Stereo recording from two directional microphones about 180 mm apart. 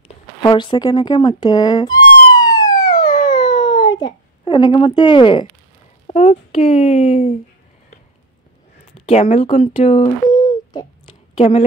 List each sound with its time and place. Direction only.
0.1 s speech: 25° left (ahead or behind)
2.3 s police car: 20° left (ahead or behind)
3.3 s a sound: 25° left (ahead or behind)
6.0 s speech: 40° left (ahead or behind)
9.0 s speech: 35° left (ahead or behind)
10.4 s a sound: 25° left (ahead or behind)